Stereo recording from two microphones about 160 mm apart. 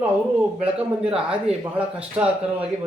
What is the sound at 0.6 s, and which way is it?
Speech, 5° right (ahead or behind).